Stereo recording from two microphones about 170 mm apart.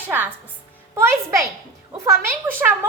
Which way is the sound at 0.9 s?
15° right (ahead or behind).